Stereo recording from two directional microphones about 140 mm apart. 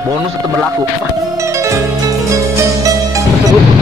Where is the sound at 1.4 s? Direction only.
20° right (ahead or behind).